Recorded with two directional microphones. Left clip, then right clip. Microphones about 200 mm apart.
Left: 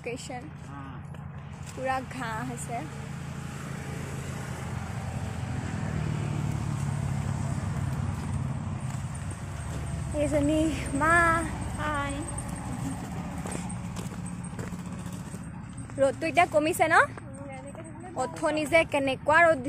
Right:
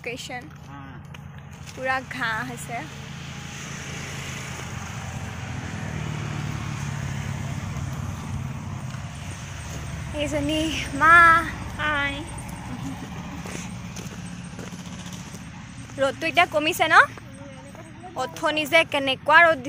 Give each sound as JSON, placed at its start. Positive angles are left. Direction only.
{"t": 0.0, "sound": "speech", "side_deg": -5}
{"t": 1.9, "sound": "speech", "side_deg": 0}
{"t": 5.7, "sound": "vehicle", "side_deg": -30}
{"t": 10.1, "sound": "speech", "side_deg": 10}
{"t": 11.8, "sound": "a sound", "side_deg": -10}
{"t": 16.0, "sound": "speech", "side_deg": 0}
{"t": 18.1, "sound": "speech", "side_deg": 5}